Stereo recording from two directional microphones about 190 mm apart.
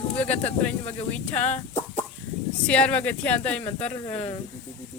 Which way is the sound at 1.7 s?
35° left (ahead or behind).